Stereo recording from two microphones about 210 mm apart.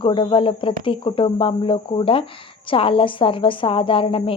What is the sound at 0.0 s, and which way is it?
Speech, 25° left (ahead or behind).